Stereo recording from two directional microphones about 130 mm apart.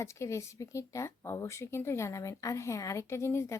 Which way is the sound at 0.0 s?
20° left (ahead or behind).